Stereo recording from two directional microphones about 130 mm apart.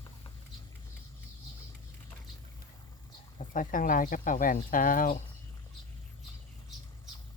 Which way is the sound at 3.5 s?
90° left.